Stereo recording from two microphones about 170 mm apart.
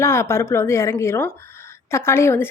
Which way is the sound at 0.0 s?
15° left (ahead or behind).